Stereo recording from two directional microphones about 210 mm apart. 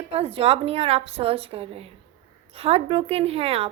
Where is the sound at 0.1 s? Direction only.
30° right (ahead or behind).